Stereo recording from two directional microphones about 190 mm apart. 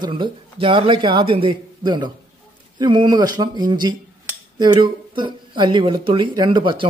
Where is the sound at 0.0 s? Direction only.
25° right (ahead or behind).